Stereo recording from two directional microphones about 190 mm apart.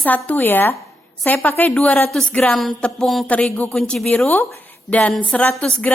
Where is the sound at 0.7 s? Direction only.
Centre (ahead or behind).